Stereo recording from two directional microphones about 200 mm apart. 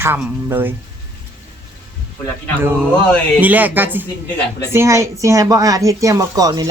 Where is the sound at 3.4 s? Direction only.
10° right (ahead or behind).